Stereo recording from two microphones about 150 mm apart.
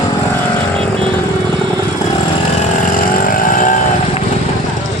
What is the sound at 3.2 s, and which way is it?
Vehicle, 65° left (ahead or behind).